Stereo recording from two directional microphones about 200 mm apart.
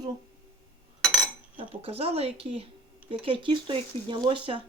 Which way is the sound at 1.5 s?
30° right (ahead or behind).